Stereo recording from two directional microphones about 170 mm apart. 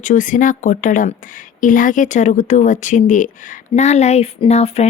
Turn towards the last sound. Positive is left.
turn(degrees=40)  # may be behind; listen again after turning